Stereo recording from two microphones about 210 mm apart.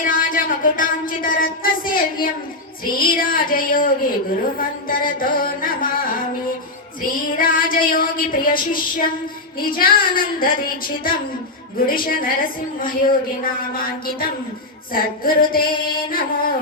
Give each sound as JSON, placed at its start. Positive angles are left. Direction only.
{"t": 0.0, "sound": "music", "side_deg": 40}
{"t": 2.8, "sound": "a woman's voice", "side_deg": 45}